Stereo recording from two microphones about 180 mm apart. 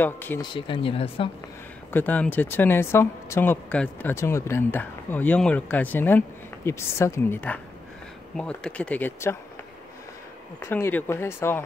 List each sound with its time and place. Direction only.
0.0 s speech: 10° left (ahead or behind)
0.4 s speech: 25° left (ahead or behind)
1.9 s speech: 10° left (ahead or behind)
10.6 s speech: 15° left (ahead or behind)